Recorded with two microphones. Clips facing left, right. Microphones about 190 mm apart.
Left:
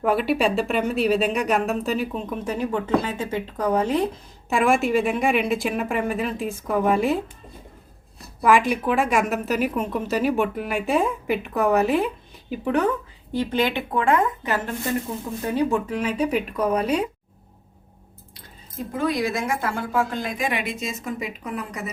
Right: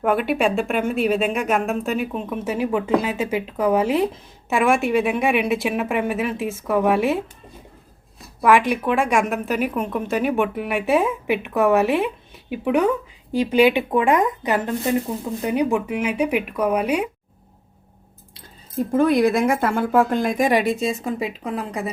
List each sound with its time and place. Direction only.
0.2 s a woman's voice: 50° right (ahead or behind)
1.2 s a woman's voice: centre (ahead or behind)
8.4 s a woman's voice: centre (ahead or behind)
18.9 s a woman's voice: 50° right (ahead or behind); by 21.8 s 30° right (ahead or behind)